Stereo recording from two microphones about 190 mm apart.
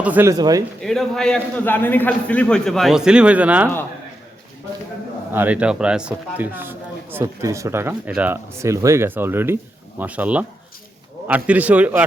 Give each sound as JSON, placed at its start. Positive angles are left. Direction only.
{"t": 0.0, "sound": "speech", "side_deg": -10}
{"t": 0.8, "sound": "a man's voice", "side_deg": 0}
{"t": 5.3, "sound": "speech", "side_deg": -10}